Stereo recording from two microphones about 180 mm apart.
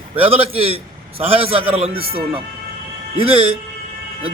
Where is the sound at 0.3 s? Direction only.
30° right (ahead or behind).